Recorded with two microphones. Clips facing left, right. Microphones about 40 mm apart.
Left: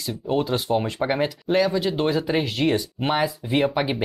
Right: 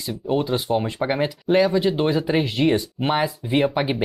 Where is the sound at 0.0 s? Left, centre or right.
Centre.